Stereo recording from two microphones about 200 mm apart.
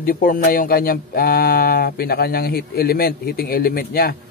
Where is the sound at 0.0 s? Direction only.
45° left (ahead or behind).